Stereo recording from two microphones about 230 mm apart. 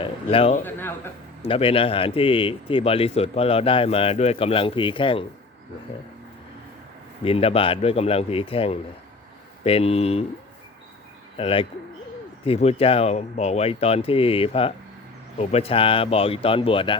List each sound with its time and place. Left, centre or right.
0.0 s speech: left
0.6 s a sound: centre
1.4 s speech: left
7.3 s speech: left
11.3 s speech: left